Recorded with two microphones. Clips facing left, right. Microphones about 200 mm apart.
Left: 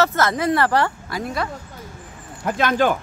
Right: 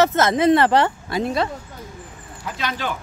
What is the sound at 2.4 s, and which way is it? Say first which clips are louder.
Speech: left 8 dB; 50° left (ahead or behind).